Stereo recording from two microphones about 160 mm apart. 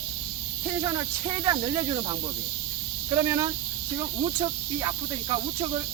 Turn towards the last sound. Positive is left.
turn(degrees=-25)  # may be behind; listen again after turning